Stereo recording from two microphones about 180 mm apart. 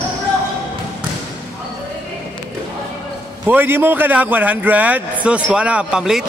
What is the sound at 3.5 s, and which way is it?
A man's voice, 10° right (ahead or behind).